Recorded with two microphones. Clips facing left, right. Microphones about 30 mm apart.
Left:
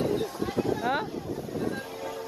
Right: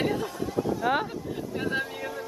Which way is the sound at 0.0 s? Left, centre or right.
Right.